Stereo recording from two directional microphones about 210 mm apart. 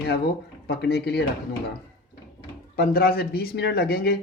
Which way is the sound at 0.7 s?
50° left (ahead or behind).